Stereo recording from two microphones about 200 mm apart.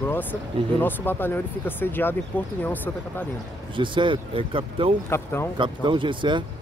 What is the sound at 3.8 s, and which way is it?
Speech, 25° right (ahead or behind).